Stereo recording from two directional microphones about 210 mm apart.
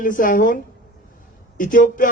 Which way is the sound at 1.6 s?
40° left (ahead or behind).